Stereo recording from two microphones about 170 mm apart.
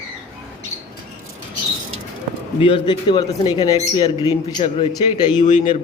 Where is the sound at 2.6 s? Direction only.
35° left (ahead or behind).